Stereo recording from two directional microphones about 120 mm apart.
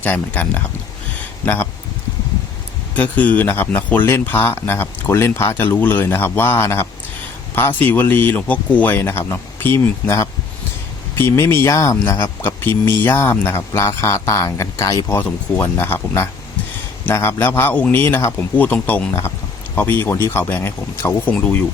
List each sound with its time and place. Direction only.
0.0 s speech: 15° left (ahead or behind)
2.9 s speech: 15° left (ahead or behind)
15.0 s speech: 15° left (ahead or behind)